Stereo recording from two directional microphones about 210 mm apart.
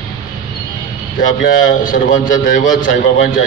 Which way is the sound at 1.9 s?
40° left (ahead or behind).